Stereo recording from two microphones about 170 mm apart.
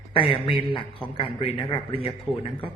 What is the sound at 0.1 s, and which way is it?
A man's voice, 30° left (ahead or behind).